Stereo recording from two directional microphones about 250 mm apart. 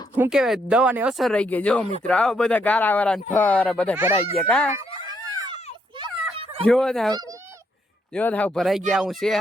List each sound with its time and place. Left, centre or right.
0.2 s speech: centre
3.9 s speech: centre
4.4 s speech: centre
6.3 s dog: right
6.7 s speech: centre
8.1 s speech: centre